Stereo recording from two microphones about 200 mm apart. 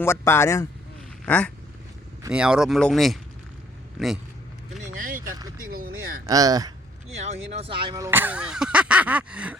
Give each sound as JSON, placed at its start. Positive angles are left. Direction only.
{"t": 0.0, "sound": "speech", "side_deg": 10}
{"t": 2.3, "sound": "speech", "side_deg": -5}
{"t": 4.8, "sound": "vehicle", "side_deg": -45}
{"t": 5.5, "sound": "a sound", "side_deg": -45}
{"t": 6.2, "sound": "speech", "side_deg": -20}
{"t": 7.2, "sound": "speech", "side_deg": -30}
{"t": 7.9, "sound": "speech", "side_deg": -15}